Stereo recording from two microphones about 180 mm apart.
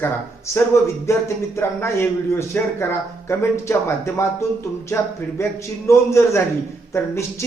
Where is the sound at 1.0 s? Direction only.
15° left (ahead or behind).